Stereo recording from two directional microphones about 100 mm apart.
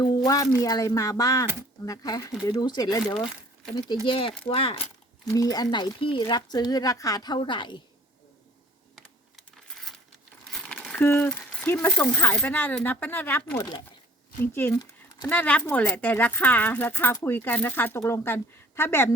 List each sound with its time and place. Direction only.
0.6 s speech: 35° left (ahead or behind)
4.0 s speech: 60° left (ahead or behind)
5.2 s speech: 40° left (ahead or behind)
7.3 s speech: 55° left (ahead or behind)
10.9 s speech: 20° left (ahead or behind)
13.6 s speech: 50° left (ahead or behind)
14.4 s speech: 20° left (ahead or behind)